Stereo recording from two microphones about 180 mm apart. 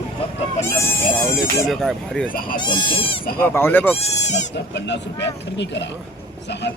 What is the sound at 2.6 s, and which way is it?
Speech, 25° left (ahead or behind).